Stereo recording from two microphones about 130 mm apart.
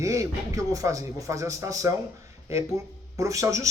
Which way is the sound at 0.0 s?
25° right (ahead or behind).